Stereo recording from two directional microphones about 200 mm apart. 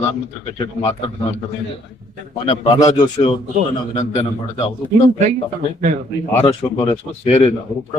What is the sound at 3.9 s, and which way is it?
Speech, 30° left (ahead or behind).